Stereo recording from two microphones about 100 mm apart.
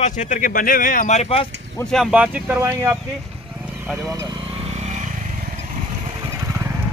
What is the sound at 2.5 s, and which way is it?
Speech, 30° right (ahead or behind).